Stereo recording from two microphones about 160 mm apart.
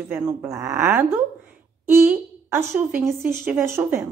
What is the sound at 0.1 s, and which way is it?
Speech, 10° right (ahead or behind).